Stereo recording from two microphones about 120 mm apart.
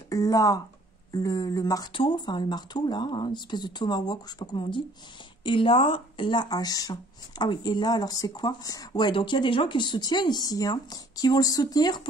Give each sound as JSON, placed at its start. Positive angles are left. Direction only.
{"t": 0.1, "sound": "speech", "side_deg": 30}
{"t": 1.9, "sound": "speech", "side_deg": 45}